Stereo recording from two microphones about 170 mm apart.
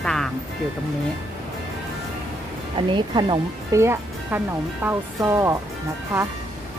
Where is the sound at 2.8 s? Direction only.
30° right (ahead or behind).